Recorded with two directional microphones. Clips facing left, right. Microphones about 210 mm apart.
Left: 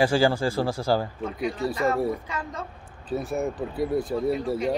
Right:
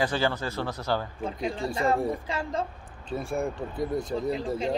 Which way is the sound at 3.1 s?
5° left (ahead or behind).